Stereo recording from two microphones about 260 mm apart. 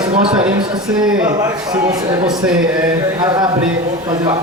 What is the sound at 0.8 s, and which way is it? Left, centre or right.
Speech, centre.